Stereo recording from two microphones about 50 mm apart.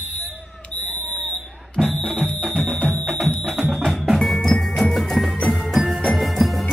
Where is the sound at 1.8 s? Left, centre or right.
Centre.